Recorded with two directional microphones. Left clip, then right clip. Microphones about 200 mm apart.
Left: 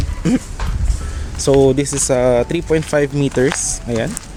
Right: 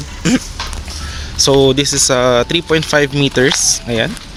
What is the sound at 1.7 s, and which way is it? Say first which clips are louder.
Speech: right 3 dB; 10° left (ahead or behind).